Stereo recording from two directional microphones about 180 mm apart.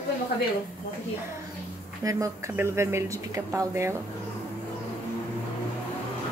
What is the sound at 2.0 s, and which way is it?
Speech, 20° right (ahead or behind).